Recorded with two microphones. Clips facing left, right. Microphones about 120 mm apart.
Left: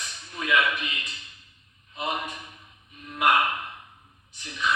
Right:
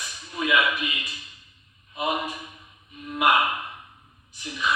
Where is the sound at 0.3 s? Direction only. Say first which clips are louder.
Right 2 dB; 10° right (ahead or behind).